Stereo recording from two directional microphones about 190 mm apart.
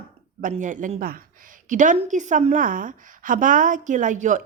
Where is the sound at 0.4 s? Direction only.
40° right (ahead or behind).